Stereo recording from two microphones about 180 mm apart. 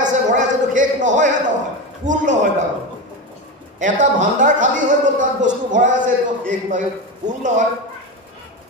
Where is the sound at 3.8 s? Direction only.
45° right (ahead or behind).